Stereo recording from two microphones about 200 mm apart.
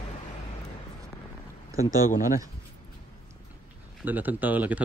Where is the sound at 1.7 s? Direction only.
15° right (ahead or behind).